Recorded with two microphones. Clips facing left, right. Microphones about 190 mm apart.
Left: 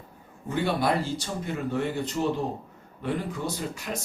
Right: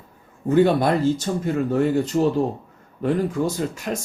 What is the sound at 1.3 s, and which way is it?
Speech, 50° right (ahead or behind).